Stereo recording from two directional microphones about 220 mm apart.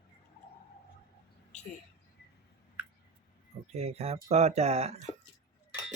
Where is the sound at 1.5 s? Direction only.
30° left (ahead or behind).